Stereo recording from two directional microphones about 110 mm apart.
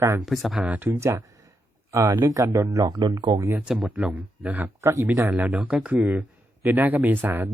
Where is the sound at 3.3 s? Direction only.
25° right (ahead or behind).